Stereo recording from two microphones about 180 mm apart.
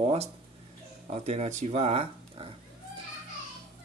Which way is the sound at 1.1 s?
35° right (ahead or behind).